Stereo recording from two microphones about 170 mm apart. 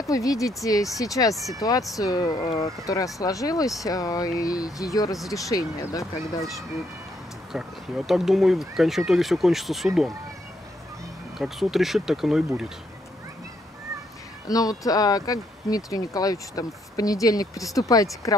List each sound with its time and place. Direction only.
0.1 s speech: 20° left (ahead or behind)
7.5 s speech: 5° right (ahead or behind)
11.3 s speech: centre (ahead or behind)
14.5 s speech: 20° left (ahead or behind)